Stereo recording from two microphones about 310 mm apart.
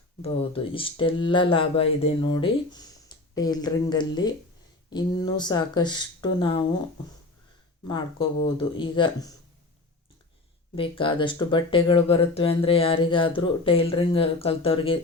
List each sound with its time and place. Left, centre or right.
0.2 s speech: centre
7.9 s speech: centre
10.8 s speech: centre